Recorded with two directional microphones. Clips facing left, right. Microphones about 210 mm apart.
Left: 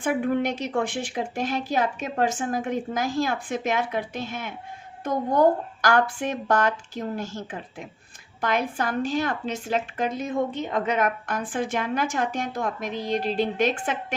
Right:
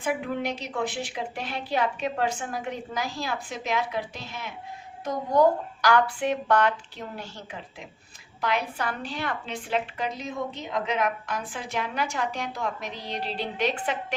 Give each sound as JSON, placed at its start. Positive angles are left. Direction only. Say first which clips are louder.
{"t": 0.0, "sound": "a woman's voice", "louder": "left 5 dB", "side_deg": 50}